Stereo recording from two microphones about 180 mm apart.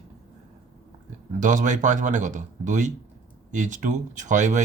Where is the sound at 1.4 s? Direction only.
45° right (ahead or behind).